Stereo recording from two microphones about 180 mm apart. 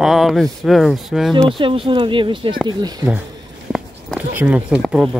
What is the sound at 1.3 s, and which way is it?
Speech, 30° right (ahead or behind).